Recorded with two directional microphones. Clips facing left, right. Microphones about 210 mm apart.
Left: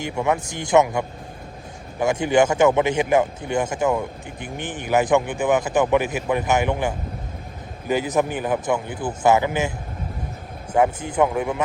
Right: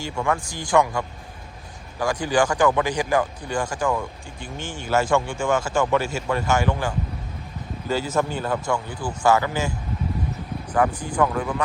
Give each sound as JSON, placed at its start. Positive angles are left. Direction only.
{"t": 0.0, "sound": "speech", "side_deg": 20}